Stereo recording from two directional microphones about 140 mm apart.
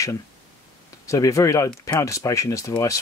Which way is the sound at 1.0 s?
20° left (ahead or behind).